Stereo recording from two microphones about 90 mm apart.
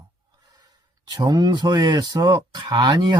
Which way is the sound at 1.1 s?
55° right (ahead or behind).